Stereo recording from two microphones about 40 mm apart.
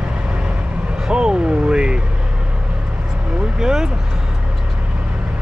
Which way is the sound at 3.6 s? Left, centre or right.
Centre.